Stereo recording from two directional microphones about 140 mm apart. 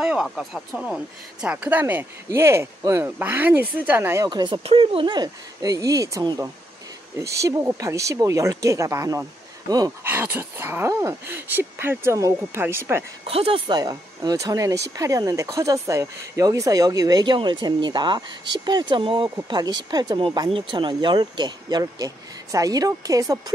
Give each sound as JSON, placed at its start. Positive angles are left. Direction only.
{"t": 0.0, "sound": "speech", "side_deg": -5}
{"t": 4.3, "sound": "speech", "side_deg": -30}
{"t": 10.0, "sound": "speech", "side_deg": -15}
{"t": 13.2, "sound": "speech", "side_deg": -45}
{"t": 13.7, "sound": "speech", "side_deg": -25}